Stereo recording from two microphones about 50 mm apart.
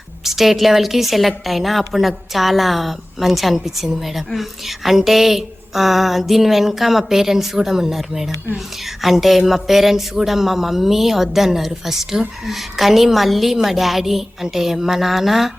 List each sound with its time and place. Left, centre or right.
0.3 s a woman's voice: centre